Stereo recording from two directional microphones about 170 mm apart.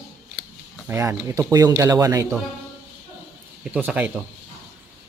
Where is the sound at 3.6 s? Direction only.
5° right (ahead or behind).